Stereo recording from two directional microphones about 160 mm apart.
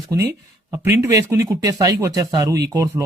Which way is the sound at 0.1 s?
20° right (ahead or behind).